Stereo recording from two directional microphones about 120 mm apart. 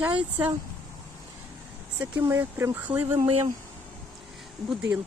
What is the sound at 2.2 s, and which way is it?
Speech, 25° right (ahead or behind).